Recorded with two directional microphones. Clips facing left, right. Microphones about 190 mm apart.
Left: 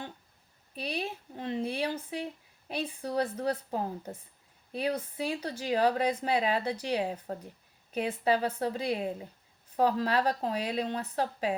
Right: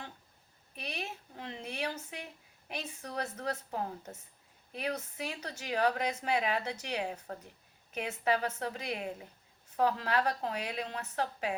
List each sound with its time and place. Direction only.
0.8 s speech: 30° left (ahead or behind)